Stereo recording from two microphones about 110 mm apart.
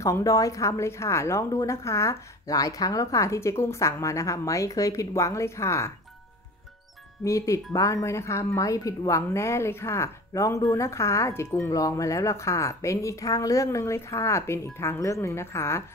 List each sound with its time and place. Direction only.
0.0 s speech: 30° left (ahead or behind)
7.2 s speech: 30° left (ahead or behind)